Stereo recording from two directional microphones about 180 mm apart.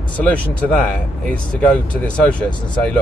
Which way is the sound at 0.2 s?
5° left (ahead or behind).